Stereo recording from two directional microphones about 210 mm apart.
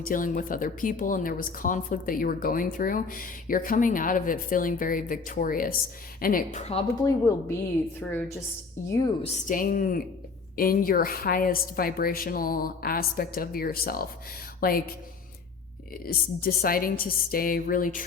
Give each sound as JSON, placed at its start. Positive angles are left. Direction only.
{"t": 0.0, "sound": "speech", "side_deg": 40}
{"t": 7.0, "sound": "speech", "side_deg": 15}
{"t": 9.2, "sound": "a woman's voice", "side_deg": 40}
{"t": 16.0, "sound": "a woman's voice", "side_deg": 45}